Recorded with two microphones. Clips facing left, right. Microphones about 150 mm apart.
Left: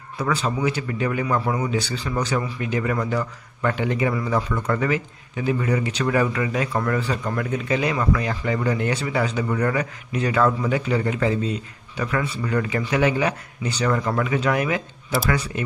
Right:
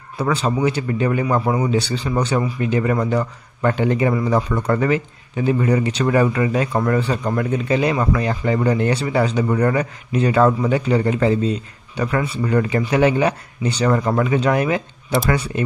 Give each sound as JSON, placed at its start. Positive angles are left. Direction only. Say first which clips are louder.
{"t": 0.2, "sound": "a man's voice", "louder": "right 4 dB", "side_deg": -30}